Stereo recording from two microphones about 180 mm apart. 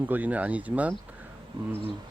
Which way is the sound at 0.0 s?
10° right (ahead or behind).